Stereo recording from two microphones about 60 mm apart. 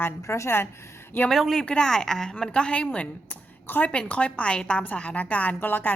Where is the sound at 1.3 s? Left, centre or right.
Centre; by 3.1 s left.